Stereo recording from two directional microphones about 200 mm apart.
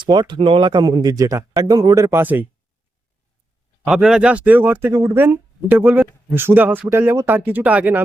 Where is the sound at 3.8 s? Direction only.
5° right (ahead or behind).